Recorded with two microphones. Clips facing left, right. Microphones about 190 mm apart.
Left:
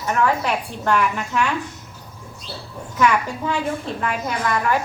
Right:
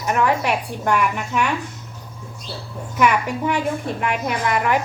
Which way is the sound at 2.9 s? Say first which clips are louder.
Right 1 dB; 15° right (ahead or behind).